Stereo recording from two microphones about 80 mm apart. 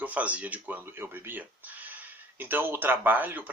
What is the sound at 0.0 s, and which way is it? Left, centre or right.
Speech, centre.